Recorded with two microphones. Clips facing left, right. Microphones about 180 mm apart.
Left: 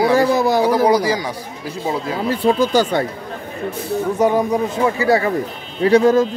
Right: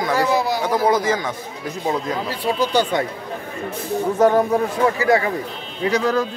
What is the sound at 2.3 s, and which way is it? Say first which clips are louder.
Speech: left 5 dB; 45° left (ahead or behind).